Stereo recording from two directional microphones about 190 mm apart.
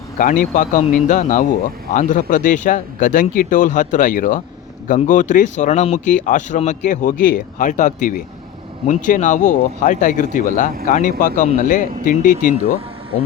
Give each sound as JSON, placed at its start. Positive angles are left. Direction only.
{"t": 0.2, "sound": "speech", "side_deg": 45}